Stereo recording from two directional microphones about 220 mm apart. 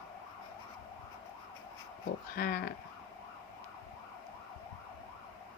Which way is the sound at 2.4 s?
45° left (ahead or behind).